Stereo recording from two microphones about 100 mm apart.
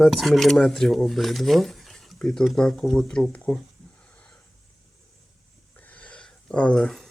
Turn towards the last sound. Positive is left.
turn(degrees=5)  # may be behind; listen again after turning